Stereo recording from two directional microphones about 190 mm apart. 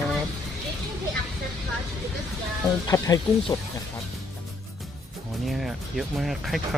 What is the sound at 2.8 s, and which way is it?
Speech, 20° left (ahead or behind).